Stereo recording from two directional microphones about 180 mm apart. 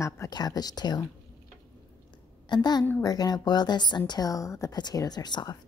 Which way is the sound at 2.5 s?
25° left (ahead or behind).